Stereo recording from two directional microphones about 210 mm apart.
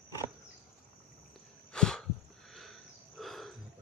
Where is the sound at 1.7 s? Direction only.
5° left (ahead or behind).